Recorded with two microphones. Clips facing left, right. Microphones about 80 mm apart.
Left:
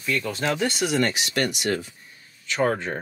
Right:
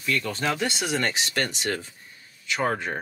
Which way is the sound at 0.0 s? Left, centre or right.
Left.